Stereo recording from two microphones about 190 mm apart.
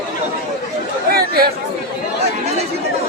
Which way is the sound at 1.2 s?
55° right (ahead or behind).